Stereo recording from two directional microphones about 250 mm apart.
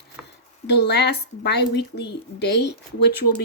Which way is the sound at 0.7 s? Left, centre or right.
Left.